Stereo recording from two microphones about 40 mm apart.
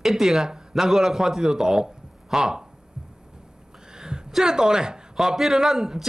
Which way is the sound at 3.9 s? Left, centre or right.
Centre.